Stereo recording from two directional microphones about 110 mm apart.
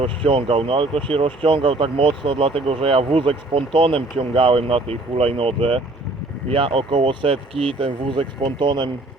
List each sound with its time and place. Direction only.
0.0 s speech: 60° right (ahead or behind)